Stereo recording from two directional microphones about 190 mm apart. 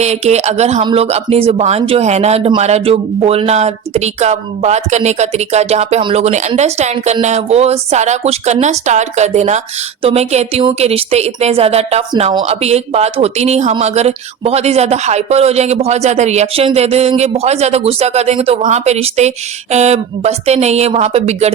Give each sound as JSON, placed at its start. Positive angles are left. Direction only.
{"t": 0.0, "sound": "a woman's voice", "side_deg": -35}